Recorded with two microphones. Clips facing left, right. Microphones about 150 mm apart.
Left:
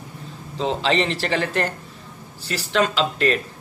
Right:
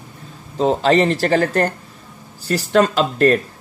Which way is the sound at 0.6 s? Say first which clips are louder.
Right 6 dB; 45° right (ahead or behind).